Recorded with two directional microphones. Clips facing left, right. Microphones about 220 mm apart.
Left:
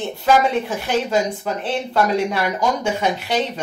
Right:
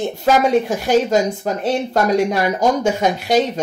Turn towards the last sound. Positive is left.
turn(degrees=-40)  # may be behind; listen again after turning